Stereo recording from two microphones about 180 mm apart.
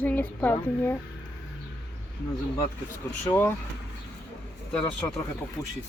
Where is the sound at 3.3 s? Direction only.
15° left (ahead or behind).